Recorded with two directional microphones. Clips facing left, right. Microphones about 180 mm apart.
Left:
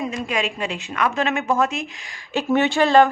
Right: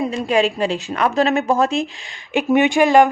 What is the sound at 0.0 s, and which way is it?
Speech, 35° right (ahead or behind).